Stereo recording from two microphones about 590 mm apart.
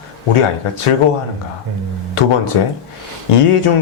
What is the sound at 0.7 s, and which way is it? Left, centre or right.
Speech, left.